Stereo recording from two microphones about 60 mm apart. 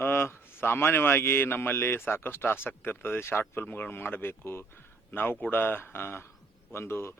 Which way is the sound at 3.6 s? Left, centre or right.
Left.